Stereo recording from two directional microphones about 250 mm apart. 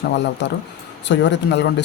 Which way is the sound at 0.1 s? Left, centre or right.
Left.